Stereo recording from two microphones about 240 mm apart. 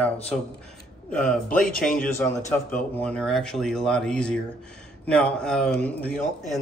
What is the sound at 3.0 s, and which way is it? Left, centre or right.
Speech, centre.